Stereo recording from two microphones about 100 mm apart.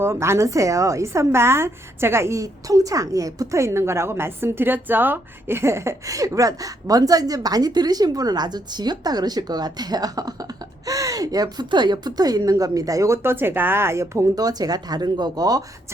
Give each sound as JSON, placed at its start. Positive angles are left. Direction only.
{"t": 0.0, "sound": "a woman's voice", "side_deg": -25}